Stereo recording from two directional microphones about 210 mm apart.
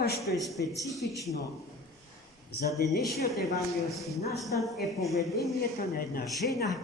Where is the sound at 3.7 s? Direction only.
Centre (ahead or behind).